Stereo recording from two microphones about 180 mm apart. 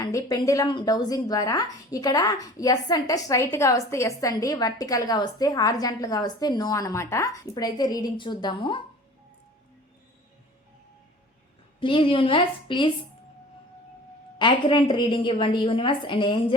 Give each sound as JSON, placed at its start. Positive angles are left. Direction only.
{"t": 0.0, "sound": "speech", "side_deg": 20}
{"t": 11.8, "sound": "speech", "side_deg": 30}
{"t": 14.3, "sound": "speech", "side_deg": 25}